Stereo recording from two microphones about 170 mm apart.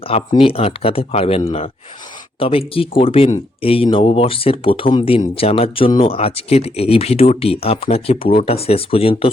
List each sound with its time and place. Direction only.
0.1 s speech: 30° left (ahead or behind)